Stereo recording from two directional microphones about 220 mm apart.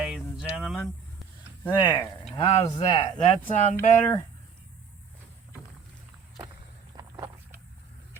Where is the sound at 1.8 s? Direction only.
15° left (ahead or behind); by 3.8 s 30° left (ahead or behind).